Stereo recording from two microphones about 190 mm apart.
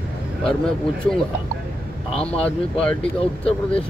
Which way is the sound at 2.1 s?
30° left (ahead or behind).